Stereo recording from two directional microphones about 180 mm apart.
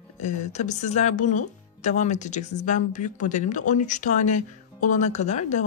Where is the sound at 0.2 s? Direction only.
40° left (ahead or behind).